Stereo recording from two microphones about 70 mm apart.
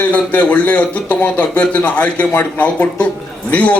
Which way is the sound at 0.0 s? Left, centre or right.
Left.